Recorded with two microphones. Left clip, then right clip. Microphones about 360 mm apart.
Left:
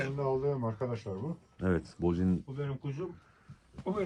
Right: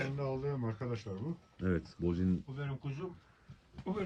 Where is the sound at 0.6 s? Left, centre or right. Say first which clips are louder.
Left 5 dB; centre.